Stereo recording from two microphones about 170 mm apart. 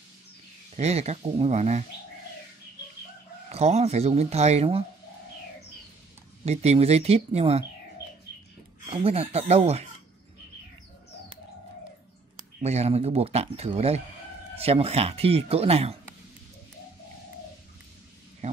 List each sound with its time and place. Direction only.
0.7 s speech: 40° right (ahead or behind)
3.4 s speech: 40° right (ahead or behind)
6.4 s speech: 40° right (ahead or behind)
8.8 s speech: 35° right (ahead or behind)
12.6 s speech: 40° right (ahead or behind)